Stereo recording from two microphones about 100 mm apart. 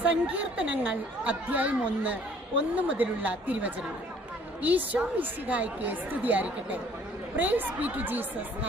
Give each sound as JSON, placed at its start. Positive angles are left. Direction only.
{"t": 0.0, "sound": "a woman's voice", "side_deg": -15}